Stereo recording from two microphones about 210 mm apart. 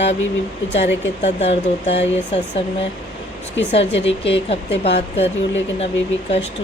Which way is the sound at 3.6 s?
55° left (ahead or behind).